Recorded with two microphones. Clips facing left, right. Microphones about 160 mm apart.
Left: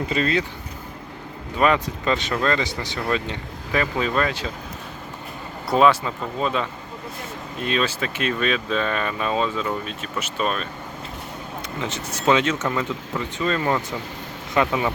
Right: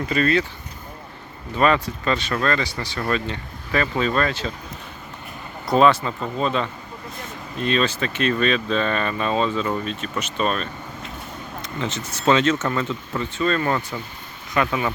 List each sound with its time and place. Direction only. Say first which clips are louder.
0.1 s speech: right 3 dB; 20° left (ahead or behind)
1.5 s speech: right 1 dB; 15° left (ahead or behind)
5.6 s speech: right 1 dB; 5° left (ahead or behind)
11.8 s speech: right 2 dB; 10° left (ahead or behind)